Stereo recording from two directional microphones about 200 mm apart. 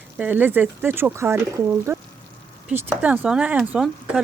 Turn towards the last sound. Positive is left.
turn(degrees=-5)  # may be behind; listen again after turning